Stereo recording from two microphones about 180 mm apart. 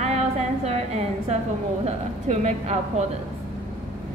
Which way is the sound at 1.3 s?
40° right (ahead or behind).